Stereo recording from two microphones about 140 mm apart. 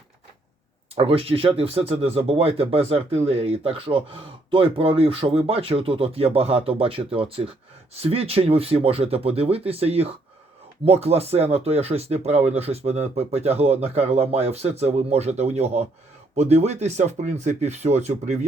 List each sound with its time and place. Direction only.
0.9 s speech: 40° right (ahead or behind)